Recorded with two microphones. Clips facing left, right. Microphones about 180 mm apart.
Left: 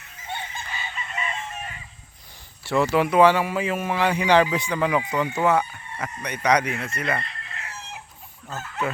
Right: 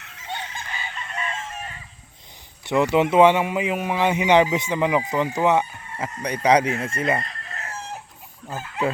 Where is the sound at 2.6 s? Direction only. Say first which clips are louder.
Right 2 dB; 20° right (ahead or behind).